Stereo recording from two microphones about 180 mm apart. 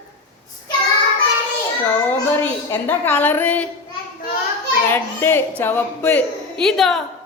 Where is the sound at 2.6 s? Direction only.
10° left (ahead or behind).